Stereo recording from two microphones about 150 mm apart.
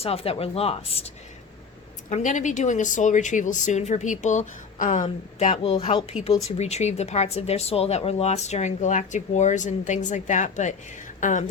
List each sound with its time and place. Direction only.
0.0 s speech: 40° left (ahead or behind)
2.0 s speech: 55° left (ahead or behind)
5.4 s speech: 45° left (ahead or behind)